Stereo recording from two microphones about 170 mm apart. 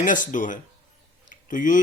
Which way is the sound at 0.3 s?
50° left (ahead or behind).